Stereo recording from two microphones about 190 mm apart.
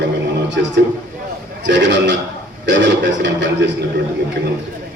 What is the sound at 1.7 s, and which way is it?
A man's voice, 70° right (ahead or behind).